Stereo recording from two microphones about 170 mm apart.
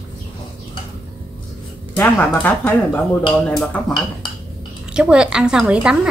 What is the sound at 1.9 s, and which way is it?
Speech, 10° left (ahead or behind).